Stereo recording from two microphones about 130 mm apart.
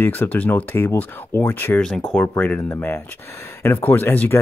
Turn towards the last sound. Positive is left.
turn(degrees=15)  # may be behind; listen again after turning